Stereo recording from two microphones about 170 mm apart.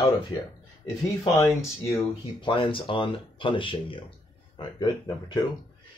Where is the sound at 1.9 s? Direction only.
35° left (ahead or behind).